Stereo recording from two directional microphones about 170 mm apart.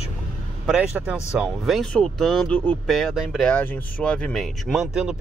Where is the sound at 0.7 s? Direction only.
5° right (ahead or behind).